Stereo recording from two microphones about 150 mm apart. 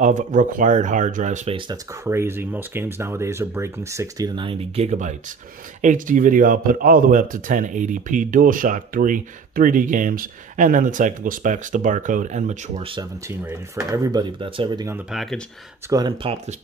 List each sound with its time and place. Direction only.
0.0 s speech: 55° right (ahead or behind)
2.0 s speech: 15° right (ahead or behind)
4.4 s speech: 40° right (ahead or behind)
5.8 s speech: 60° right (ahead or behind)
13.3 s speech: 20° right (ahead or behind)
15.0 s speech: centre (ahead or behind)
15.9 s speech: 30° right (ahead or behind)